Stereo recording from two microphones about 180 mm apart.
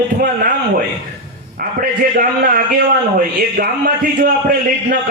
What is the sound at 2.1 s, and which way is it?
A man's voice, 50° right (ahead or behind).